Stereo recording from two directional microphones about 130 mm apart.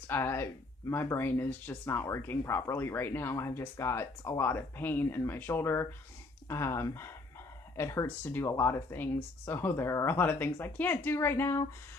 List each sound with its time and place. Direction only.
0.0 s speech: 15° left (ahead or behind)